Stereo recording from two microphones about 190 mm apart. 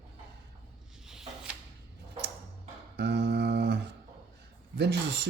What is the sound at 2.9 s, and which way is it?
Speech, 60° right (ahead or behind).